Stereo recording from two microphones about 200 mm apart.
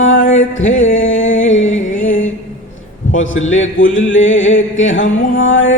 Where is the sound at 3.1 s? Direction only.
75° left (ahead or behind).